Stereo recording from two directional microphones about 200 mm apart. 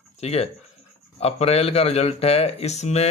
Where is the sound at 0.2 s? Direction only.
30° left (ahead or behind).